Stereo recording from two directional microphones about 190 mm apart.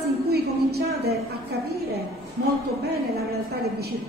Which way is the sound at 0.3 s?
55° right (ahead or behind).